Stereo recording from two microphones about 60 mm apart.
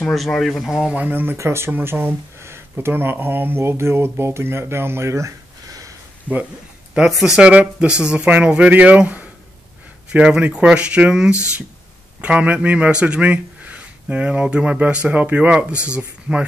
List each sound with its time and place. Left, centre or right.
0.0 s speech: centre
0.9 s speech: right
1.3 s speech: right
1.7 s speech: right
6.3 s speech: right
12.2 s speech: right